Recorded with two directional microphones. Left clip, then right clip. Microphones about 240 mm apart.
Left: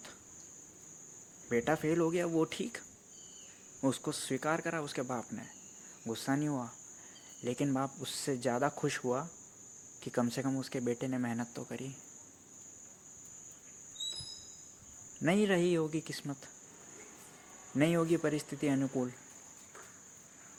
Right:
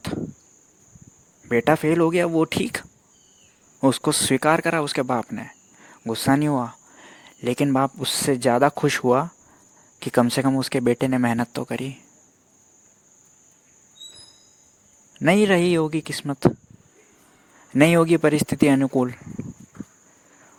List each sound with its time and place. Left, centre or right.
1.5 s speech: right
15.2 s speech: right
17.7 s speech: right